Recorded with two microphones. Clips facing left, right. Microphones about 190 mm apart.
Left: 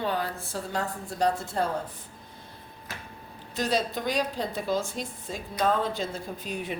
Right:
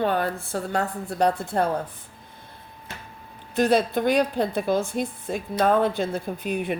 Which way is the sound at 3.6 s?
60° right (ahead or behind).